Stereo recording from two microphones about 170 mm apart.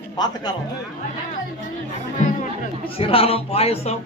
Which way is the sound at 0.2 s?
25° left (ahead or behind).